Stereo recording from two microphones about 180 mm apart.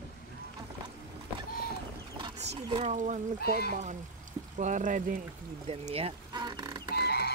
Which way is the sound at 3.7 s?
45° right (ahead or behind).